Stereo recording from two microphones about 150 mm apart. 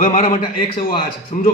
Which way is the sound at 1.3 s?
50° left (ahead or behind).